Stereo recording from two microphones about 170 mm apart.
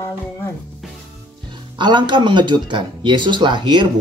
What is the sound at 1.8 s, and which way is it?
Speech, 30° right (ahead or behind).